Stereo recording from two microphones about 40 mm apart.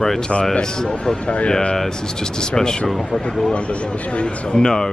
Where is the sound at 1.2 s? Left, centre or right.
Left.